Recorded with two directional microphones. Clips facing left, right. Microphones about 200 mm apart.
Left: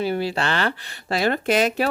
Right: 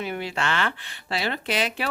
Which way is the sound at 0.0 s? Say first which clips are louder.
Left 5 dB; 35° left (ahead or behind).